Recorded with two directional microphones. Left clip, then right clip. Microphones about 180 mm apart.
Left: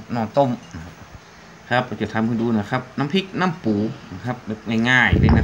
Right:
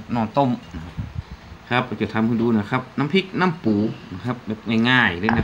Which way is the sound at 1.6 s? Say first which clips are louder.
Left 1 dB; 5° left (ahead or behind).